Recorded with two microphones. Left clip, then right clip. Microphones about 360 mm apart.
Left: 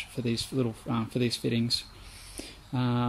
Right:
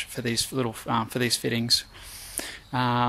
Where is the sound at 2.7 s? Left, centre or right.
Centre.